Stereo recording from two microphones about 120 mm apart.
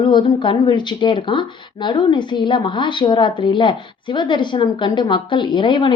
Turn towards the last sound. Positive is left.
turn(degrees=40)  # may be behind; listen again after turning